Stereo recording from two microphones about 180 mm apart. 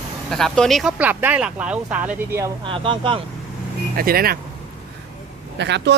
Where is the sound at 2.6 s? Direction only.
30° right (ahead or behind).